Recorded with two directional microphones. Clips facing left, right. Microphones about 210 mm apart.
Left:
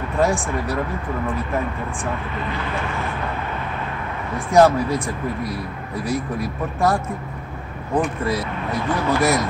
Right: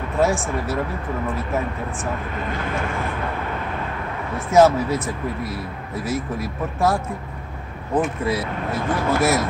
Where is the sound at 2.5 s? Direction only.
50° right (ahead or behind).